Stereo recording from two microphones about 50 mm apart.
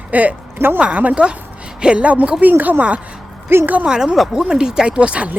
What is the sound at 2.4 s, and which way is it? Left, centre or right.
Speech, right.